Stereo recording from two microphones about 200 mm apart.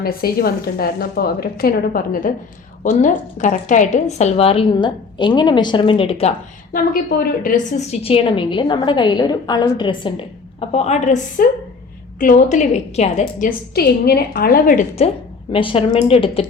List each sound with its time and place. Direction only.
0.0 s a woman's voice: 50° left (ahead or behind); by 6.3 s 30° left (ahead or behind)
6.7 s a woman's voice: 45° left (ahead or behind)
13.7 s a woman's voice: 50° left (ahead or behind)
15.5 s a woman's voice: 25° left (ahead or behind)